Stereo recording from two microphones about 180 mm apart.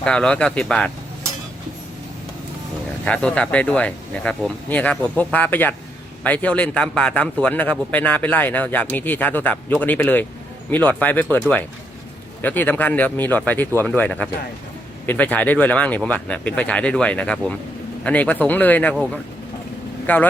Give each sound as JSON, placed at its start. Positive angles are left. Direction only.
{"t": 0.0, "sound": "speech", "side_deg": 5}
{"t": 3.0, "sound": "a man's voice", "side_deg": 5}
{"t": 20.1, "sound": "a man's voice", "side_deg": 10}